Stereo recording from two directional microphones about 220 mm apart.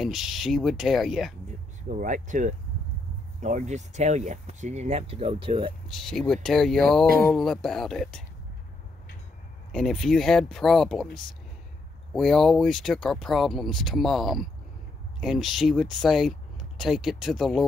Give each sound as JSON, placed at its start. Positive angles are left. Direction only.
{"t": 0.0, "sound": "speech", "side_deg": 0}
{"t": 1.9, "sound": "speech", "side_deg": -35}
{"t": 5.9, "sound": "speech", "side_deg": 0}
{"t": 9.7, "sound": "speech", "side_deg": 0}
{"t": 12.1, "sound": "speech", "side_deg": 0}